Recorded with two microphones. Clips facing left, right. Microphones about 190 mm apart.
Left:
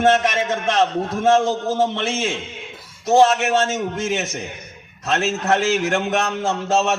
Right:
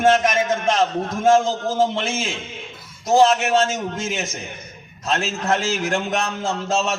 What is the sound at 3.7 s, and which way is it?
A man's voice, 70° left (ahead or behind).